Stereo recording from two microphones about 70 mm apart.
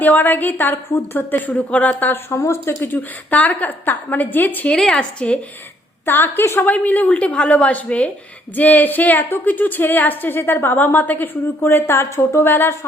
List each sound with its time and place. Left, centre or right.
0.0 s a woman's voice: left
2.3 s a woman's voice: left
4.7 s a woman's voice: centre
6.1 s a woman's voice: left